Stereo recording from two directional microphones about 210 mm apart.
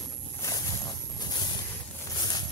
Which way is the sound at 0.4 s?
15° left (ahead or behind).